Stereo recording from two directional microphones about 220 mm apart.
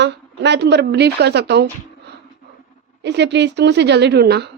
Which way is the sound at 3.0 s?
50° right (ahead or behind).